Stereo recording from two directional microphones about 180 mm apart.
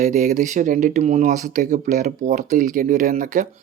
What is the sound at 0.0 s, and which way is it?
Speech, 40° right (ahead or behind).